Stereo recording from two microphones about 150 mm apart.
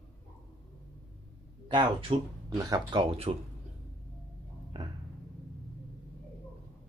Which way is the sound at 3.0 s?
40° right (ahead or behind).